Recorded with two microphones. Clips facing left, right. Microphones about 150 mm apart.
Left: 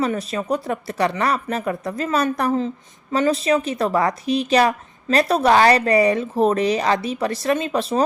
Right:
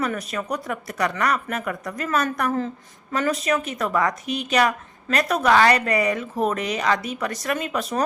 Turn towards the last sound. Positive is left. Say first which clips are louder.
# left 5 dB
turn(degrees=30)  # may be behind; listen again after turning